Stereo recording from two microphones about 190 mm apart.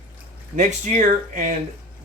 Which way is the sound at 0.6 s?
40° right (ahead or behind).